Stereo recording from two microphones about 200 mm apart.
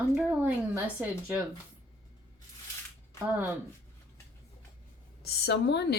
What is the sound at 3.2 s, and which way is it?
Speech, 10° right (ahead or behind).